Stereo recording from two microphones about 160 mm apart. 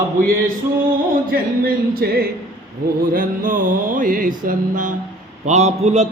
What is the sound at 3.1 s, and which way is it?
Mantra, 60° right (ahead or behind).